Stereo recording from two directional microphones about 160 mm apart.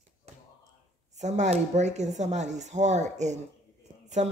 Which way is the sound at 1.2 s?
45° right (ahead or behind).